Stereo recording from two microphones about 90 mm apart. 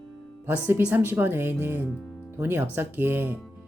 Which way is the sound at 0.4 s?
20° right (ahead or behind).